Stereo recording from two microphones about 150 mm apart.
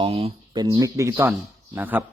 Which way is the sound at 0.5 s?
25° right (ahead or behind).